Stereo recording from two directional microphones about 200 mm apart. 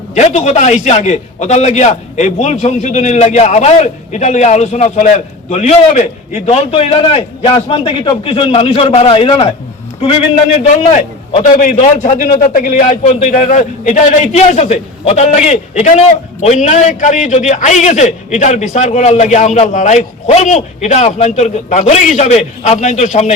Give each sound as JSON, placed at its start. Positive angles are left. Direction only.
{"t": 0.1, "sound": "a man's voice", "side_deg": 35}